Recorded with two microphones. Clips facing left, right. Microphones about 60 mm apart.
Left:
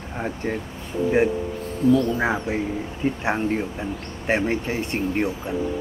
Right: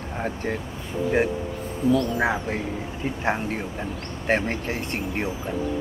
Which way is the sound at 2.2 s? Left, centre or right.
Centre.